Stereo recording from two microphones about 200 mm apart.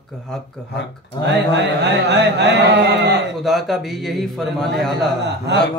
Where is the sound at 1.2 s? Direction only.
60° right (ahead or behind).